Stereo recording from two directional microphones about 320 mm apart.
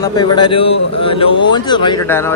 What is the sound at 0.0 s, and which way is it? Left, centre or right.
Speech, centre.